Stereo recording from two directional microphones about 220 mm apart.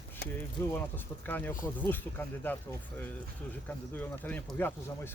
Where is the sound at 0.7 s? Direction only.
10° left (ahead or behind).